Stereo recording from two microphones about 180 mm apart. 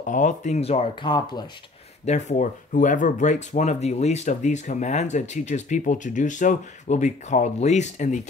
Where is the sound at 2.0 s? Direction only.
40° left (ahead or behind).